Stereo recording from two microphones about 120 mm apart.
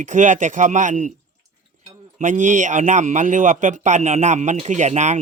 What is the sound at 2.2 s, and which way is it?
Speech, 90° right.